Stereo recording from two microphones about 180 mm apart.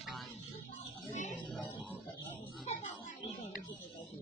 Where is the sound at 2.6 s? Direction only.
40° left (ahead or behind).